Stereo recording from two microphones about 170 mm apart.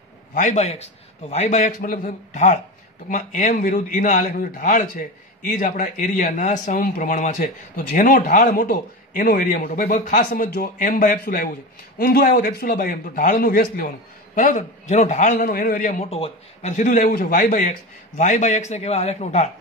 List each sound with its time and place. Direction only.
0.3 s a man's voice: 45° left (ahead or behind)
1.6 s speech: 55° left (ahead or behind)
12.0 s a man's voice: 60° left (ahead or behind)
14.3 s speech: 45° left (ahead or behind)
15.3 s speech: 55° left (ahead or behind); by 19.5 s 40° left (ahead or behind)